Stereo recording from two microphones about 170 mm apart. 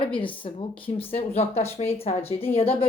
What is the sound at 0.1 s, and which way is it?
Speech, 30° left (ahead or behind).